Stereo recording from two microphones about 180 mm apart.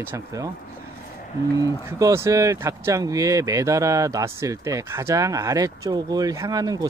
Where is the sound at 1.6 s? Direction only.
15° right (ahead or behind).